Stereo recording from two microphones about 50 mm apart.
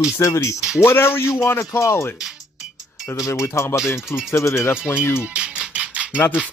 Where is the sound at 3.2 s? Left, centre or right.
Left.